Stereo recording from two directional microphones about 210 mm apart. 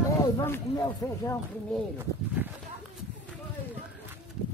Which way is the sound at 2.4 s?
10° right (ahead or behind).